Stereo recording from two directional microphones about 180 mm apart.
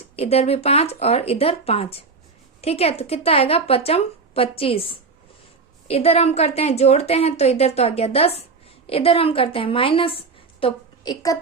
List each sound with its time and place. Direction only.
0.2 s a woman's voice: 35° left (ahead or behind)